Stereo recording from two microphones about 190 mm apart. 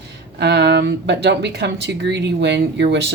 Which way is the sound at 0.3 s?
60° right (ahead or behind).